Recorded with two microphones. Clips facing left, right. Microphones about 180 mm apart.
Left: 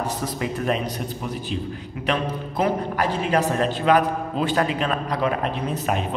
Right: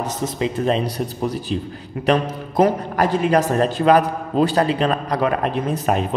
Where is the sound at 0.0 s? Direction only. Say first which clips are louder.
Right 3 dB; 20° right (ahead or behind).